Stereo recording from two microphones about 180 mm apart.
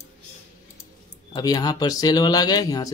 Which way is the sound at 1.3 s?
20° left (ahead or behind).